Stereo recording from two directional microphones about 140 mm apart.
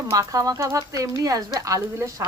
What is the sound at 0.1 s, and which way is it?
Speech, 25° right (ahead or behind).